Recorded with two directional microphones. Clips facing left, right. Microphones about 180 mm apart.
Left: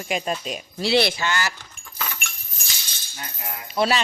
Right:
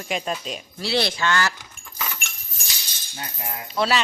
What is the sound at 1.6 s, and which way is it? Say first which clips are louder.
Vehicle: even; 5° right (ahead or behind).